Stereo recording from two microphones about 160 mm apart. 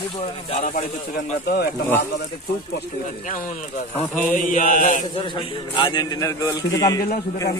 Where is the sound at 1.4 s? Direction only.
70° left (ahead or behind).